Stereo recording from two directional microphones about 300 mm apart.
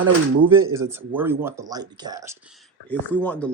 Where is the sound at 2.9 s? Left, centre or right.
Centre.